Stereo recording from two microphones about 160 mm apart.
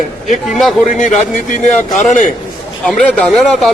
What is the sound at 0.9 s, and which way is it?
Speech, 50° left (ahead or behind).